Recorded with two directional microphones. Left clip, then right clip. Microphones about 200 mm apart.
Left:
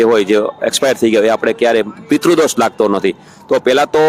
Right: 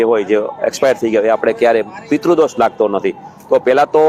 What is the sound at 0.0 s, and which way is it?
A man's voice, 30° left (ahead or behind).